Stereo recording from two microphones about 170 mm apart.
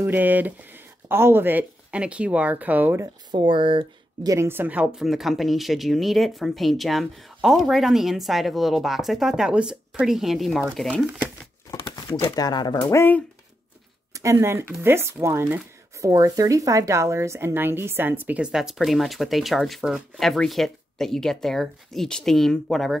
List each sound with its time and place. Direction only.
0.0 s speech: 10° right (ahead or behind)
3.3 s speech: 25° right (ahead or behind); by 11.1 s 5° left (ahead or behind)
11.8 s speech: 25° left (ahead or behind)
12.8 s speech: 15° left (ahead or behind)
14.1 s speech: 15° right (ahead or behind); by 22.9 s centre (ahead or behind)